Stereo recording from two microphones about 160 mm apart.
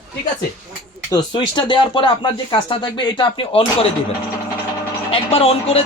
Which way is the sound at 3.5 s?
35° left (ahead or behind).